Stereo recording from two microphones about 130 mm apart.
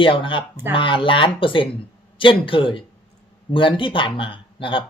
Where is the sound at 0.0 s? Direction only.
40° left (ahead or behind).